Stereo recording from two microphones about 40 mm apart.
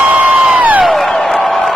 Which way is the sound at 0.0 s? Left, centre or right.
Right.